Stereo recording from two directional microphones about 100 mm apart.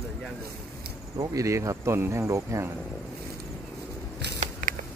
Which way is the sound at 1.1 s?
35° right (ahead or behind).